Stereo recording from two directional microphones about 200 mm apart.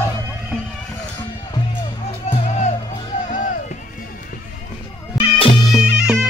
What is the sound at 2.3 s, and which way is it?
Music, 35° left (ahead or behind).